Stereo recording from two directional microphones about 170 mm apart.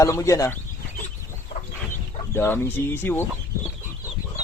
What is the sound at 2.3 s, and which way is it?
Speech, 15° left (ahead or behind).